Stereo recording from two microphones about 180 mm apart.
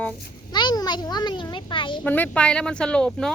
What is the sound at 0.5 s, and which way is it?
A child's voice, 20° left (ahead or behind).